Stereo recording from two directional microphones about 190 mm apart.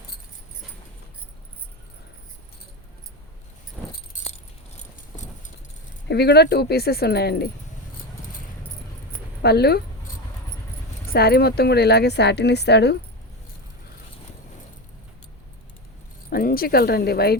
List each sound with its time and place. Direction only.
4.1 s keys jangling: 45° left (ahead or behind)
6.1 s speech: 60° left (ahead or behind)
9.4 s speech: 60° left (ahead or behind)
11.1 s speech: 55° left (ahead or behind)
16.3 s speech: 50° left (ahead or behind)